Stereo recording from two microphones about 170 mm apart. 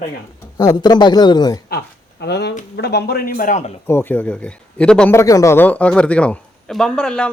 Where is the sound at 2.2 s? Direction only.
80° left; by 3.7 s 45° left (ahead or behind).